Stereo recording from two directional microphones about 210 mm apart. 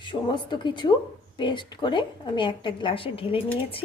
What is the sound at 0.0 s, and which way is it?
A woman's voice, 20° left (ahead or behind).